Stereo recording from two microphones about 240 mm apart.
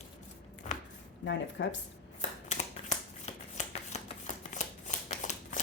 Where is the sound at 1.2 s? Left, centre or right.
Left.